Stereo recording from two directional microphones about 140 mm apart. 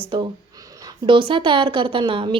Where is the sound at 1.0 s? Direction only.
35° right (ahead or behind).